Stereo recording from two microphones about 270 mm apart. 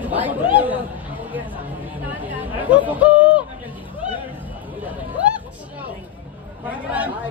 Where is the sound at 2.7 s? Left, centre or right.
Centre.